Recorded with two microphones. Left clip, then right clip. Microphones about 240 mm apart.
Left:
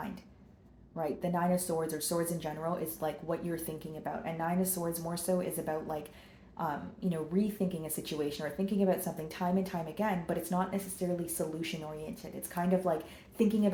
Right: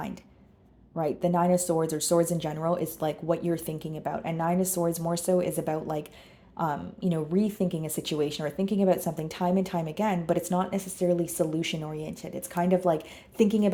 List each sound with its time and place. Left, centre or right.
0.9 s a woman's voice: right